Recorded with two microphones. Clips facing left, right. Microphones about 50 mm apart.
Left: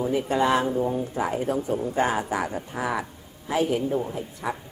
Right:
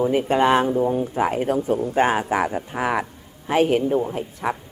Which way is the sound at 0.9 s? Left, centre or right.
Right.